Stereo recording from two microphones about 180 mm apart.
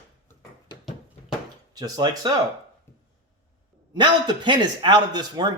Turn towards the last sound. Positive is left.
turn(degrees=-25)  # may be behind; listen again after turning